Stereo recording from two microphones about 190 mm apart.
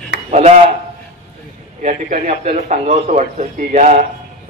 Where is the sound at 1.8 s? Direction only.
40° right (ahead or behind).